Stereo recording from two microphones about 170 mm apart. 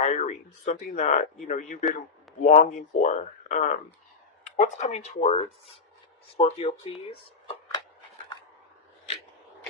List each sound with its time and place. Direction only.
0.0 s speech: 40° left (ahead or behind)